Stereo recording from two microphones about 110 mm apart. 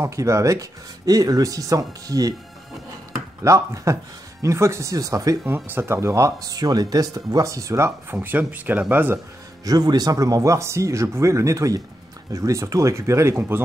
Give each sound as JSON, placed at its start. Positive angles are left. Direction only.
{"t": 0.0, "sound": "speech", "side_deg": -30}
{"t": 3.4, "sound": "speech", "side_deg": -30}
{"t": 5.5, "sound": "speech", "side_deg": -20}
{"t": 9.7, "sound": "speech", "side_deg": -35}